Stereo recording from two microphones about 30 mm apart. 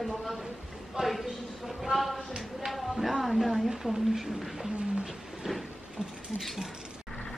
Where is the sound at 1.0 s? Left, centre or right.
Right.